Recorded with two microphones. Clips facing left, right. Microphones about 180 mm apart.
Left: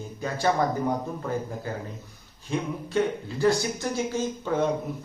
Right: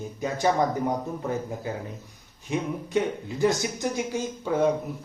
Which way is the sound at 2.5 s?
15° right (ahead or behind).